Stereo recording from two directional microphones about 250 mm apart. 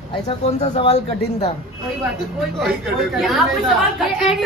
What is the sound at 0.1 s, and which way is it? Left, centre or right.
Speech, left.